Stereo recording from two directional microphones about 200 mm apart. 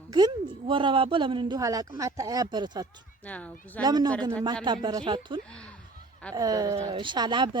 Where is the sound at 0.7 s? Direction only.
25° right (ahead or behind).